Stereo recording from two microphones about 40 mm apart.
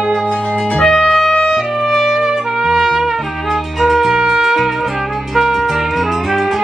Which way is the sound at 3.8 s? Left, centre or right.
Centre.